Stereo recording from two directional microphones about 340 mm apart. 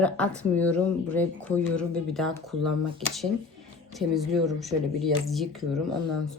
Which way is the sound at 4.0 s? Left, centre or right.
Centre.